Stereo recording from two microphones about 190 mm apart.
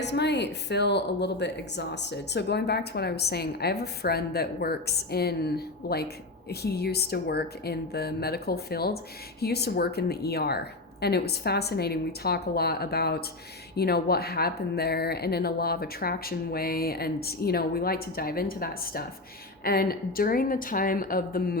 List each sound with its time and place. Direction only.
0.0 s speech: 65° left (ahead or behind)